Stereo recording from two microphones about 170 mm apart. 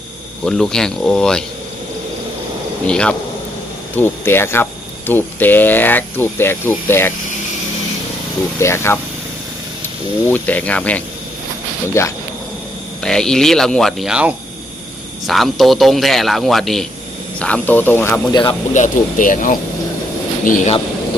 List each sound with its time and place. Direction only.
0.4 s speech: 5° left (ahead or behind)
2.8 s speech: 5° left (ahead or behind)
8.5 s speech: 15° left (ahead or behind)
13.0 s speech: 5° left (ahead or behind)
18.7 s speech: 45° left (ahead or behind)